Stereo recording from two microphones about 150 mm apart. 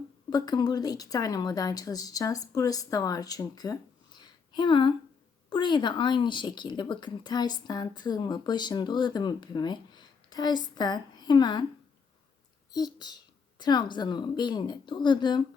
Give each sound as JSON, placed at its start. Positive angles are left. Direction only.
{"t": 0.3, "sound": "speech", "side_deg": 25}
{"t": 12.7, "sound": "speech", "side_deg": 25}